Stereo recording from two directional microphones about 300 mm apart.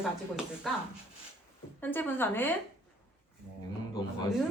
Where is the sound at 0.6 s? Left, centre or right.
Centre.